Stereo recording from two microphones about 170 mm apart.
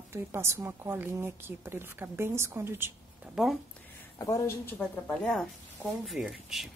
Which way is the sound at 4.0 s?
20° left (ahead or behind).